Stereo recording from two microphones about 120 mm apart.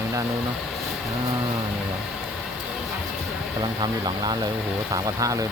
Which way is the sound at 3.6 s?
40° right (ahead or behind).